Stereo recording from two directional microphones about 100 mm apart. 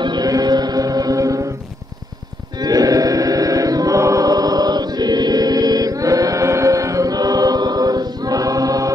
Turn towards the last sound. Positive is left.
turn(degrees=-40)  # may be behind; listen again after turning